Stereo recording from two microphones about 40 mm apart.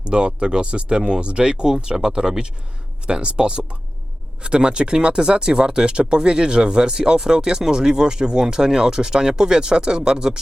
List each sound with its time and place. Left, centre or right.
0.0 s speech: right
3.1 s speech: right